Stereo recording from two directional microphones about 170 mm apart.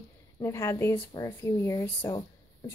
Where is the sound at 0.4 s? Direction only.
15° left (ahead or behind).